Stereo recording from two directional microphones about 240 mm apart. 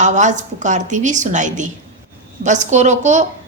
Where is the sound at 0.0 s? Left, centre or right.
Right.